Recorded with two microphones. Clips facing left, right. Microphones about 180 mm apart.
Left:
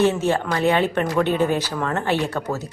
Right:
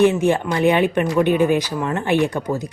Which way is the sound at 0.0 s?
15° right (ahead or behind).